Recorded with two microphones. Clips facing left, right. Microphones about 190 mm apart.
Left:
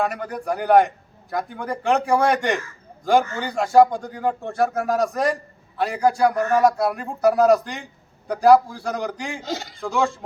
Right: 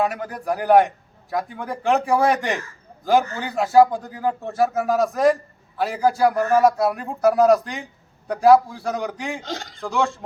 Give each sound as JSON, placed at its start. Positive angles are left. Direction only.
{"t": 0.0, "sound": "a man's voice", "side_deg": 0}